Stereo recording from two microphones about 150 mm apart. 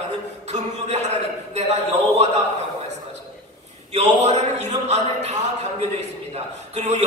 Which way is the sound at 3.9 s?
45° right (ahead or behind).